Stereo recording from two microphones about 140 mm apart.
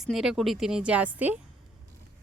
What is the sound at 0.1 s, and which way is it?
Speech, centre (ahead or behind).